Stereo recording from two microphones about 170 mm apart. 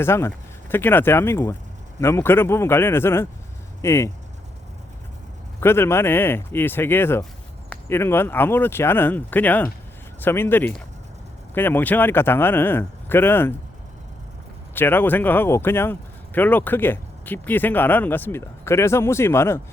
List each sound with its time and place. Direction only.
0.0 s speech: 15° left (ahead or behind)
5.5 s speech: 15° left (ahead or behind)
14.8 s speech: 10° left (ahead or behind)